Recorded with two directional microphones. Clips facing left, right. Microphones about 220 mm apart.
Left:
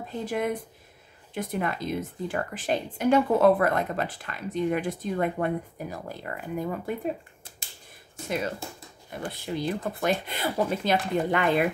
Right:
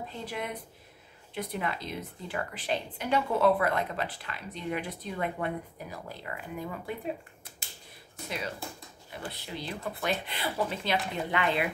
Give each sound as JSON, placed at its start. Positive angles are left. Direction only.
{"t": 0.2, "sound": "a woman's voice", "side_deg": 45}
{"t": 8.3, "sound": "a woman's voice", "side_deg": 50}